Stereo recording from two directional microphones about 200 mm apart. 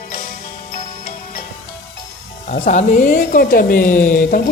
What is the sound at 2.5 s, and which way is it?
A woman's voice, 35° left (ahead or behind).